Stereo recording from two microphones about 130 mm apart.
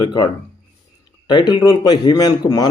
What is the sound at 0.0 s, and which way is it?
Speech, 30° left (ahead or behind).